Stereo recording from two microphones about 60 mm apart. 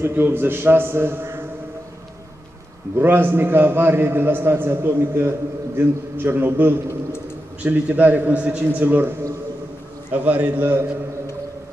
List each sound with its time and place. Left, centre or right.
0.0 s a man's voice: right
3.0 s a man's voice: right
7.6 s a man's voice: right
8.6 s a man's voice: right
10.1 s a man's voice: right